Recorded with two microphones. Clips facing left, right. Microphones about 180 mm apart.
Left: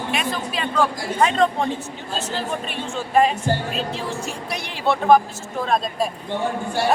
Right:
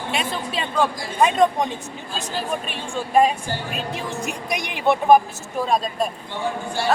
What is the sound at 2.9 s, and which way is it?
Speech, 10° right (ahead or behind).